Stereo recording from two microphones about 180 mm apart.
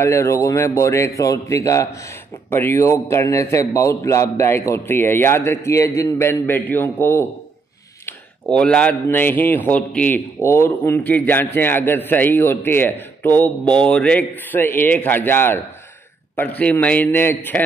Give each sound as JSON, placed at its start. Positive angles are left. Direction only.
{"t": 0.0, "sound": "a man's voice", "side_deg": 15}
{"t": 8.5, "sound": "a man's voice", "side_deg": 5}